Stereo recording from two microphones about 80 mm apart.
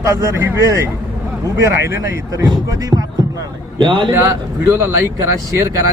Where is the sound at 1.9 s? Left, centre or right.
Right.